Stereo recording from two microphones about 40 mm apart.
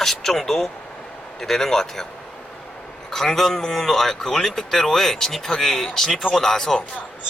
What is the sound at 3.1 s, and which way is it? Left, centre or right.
Speech, centre.